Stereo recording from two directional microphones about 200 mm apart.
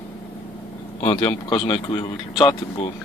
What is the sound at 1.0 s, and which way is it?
Speech, 30° left (ahead or behind).